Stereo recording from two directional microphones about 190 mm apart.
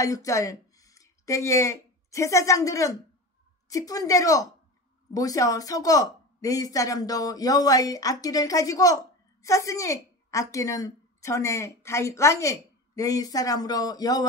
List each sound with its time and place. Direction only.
0.0 s a woman's voice: 15° left (ahead or behind)